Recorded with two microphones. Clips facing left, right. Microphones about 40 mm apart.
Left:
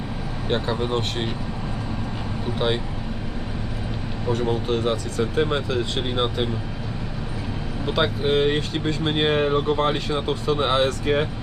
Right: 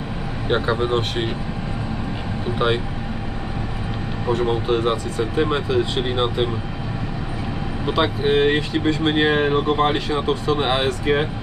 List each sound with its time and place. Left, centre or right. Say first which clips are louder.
0.4 s speech: right 4 dB; right
4.3 s speech: right 3 dB; right; by 6.5 s centre
7.9 s speech: right 2 dB; centre
8.2 s speech: right 4 dB; right
8.8 s speech: right 5 dB; centre
10.2 s speech: right 3 dB; centre
10.6 s speech: even; right